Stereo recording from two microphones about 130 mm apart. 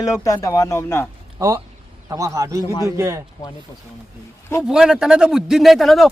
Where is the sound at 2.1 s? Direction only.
25° right (ahead or behind).